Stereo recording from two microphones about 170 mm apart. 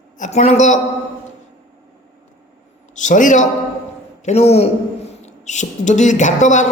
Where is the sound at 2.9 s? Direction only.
45° left (ahead or behind).